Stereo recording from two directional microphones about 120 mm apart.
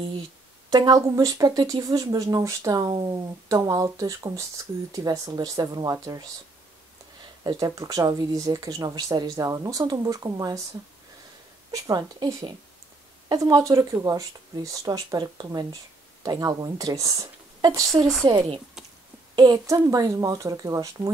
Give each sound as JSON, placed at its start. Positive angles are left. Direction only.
{"t": 0.7, "sound": "speech", "side_deg": -35}
{"t": 7.4, "sound": "speech", "side_deg": -30}
{"t": 11.7, "sound": "speech", "side_deg": -30}
{"t": 18.3, "sound": "speech", "side_deg": -40}
{"t": 18.8, "sound": "a sound", "side_deg": -5}
{"t": 19.3, "sound": "speech", "side_deg": -35}